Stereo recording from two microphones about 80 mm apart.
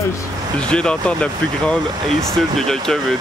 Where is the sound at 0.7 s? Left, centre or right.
Centre.